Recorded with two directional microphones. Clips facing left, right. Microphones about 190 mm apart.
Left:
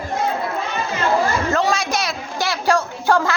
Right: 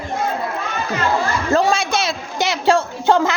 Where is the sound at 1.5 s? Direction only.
30° right (ahead or behind).